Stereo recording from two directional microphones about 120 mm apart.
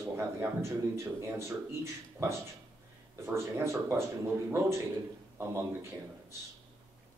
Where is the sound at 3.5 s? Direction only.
20° right (ahead or behind).